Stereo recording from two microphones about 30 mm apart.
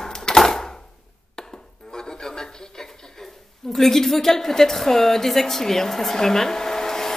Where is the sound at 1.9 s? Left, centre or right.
Left.